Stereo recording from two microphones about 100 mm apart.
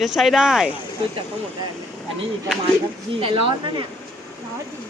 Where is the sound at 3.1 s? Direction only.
60° right (ahead or behind).